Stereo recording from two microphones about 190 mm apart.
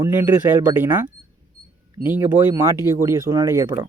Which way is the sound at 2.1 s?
10° right (ahead or behind).